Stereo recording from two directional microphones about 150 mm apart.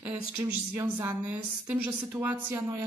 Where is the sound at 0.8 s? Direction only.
20° right (ahead or behind).